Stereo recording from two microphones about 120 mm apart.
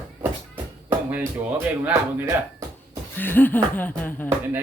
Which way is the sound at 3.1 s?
15° left (ahead or behind).